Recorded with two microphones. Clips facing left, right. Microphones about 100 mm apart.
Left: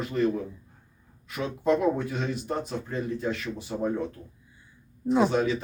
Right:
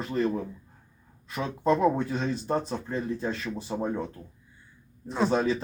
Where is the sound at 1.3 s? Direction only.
35° right (ahead or behind).